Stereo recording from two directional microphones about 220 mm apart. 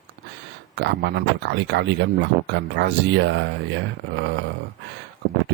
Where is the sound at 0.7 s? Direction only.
50° right (ahead or behind).